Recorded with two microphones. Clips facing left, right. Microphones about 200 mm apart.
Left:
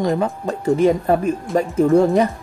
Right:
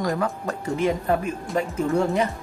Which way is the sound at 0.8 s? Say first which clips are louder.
Left 5 dB; 40° left (ahead or behind).